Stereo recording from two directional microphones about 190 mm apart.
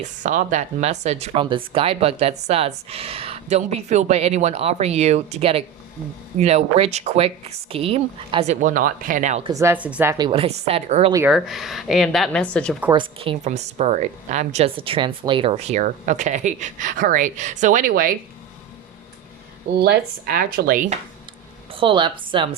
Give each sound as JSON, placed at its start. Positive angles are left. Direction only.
{"t": 0.0, "sound": "speech", "side_deg": -40}
{"t": 9.4, "sound": "a woman's voice", "side_deg": -15}
{"t": 11.3, "sound": "speech", "side_deg": 0}
{"t": 12.9, "sound": "speech", "side_deg": -25}
{"t": 19.8, "sound": "speech", "side_deg": -55}
{"t": 21.7, "sound": "a woman's voice", "side_deg": -25}